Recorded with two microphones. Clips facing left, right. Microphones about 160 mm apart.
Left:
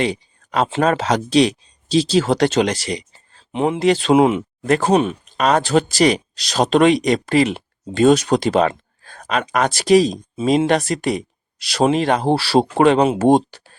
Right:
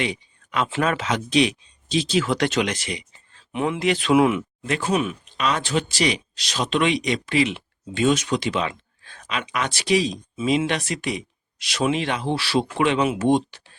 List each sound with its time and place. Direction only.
0.0 s speech: 35° left (ahead or behind)
4.6 s speech: 40° left (ahead or behind)